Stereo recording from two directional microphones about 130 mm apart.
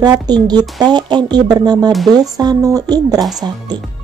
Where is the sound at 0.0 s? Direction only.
30° right (ahead or behind).